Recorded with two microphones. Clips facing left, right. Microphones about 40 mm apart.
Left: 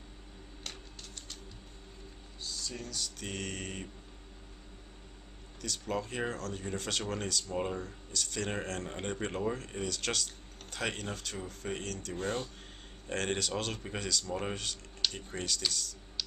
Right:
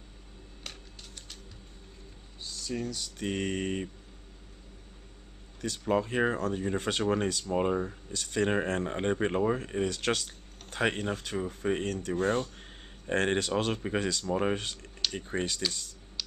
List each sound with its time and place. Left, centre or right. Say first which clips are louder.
2.4 s speech: right 6 dB; centre
5.6 s speech: right 7 dB; right